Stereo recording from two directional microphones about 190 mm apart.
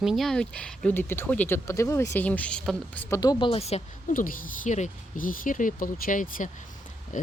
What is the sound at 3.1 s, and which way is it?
Speech, 20° left (ahead or behind).